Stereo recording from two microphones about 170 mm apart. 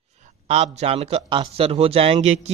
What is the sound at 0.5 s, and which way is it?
A man's voice, 40° right (ahead or behind).